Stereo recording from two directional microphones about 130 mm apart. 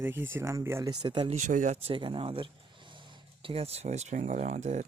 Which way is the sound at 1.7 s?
45° right (ahead or behind).